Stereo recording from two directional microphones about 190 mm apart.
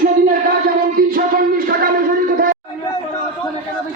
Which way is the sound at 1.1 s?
50° right (ahead or behind).